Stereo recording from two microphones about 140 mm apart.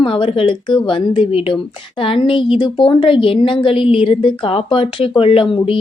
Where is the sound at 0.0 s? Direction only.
40° left (ahead or behind).